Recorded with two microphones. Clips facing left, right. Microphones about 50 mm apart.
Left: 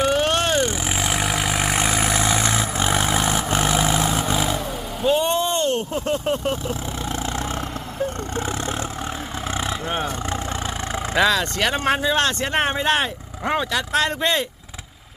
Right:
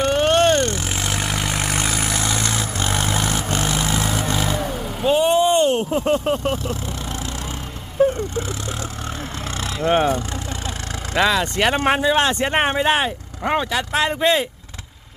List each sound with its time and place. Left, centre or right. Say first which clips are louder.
0.0 s vehicle: right 3 dB; centre
5.0 s vehicle: right 4 dB; centre
11.2 s speech: right 1 dB; centre
11.5 s speech: right 3 dB; centre